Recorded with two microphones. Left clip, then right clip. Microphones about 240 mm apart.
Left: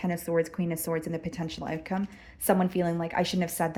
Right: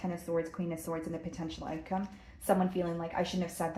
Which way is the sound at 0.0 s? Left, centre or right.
Left.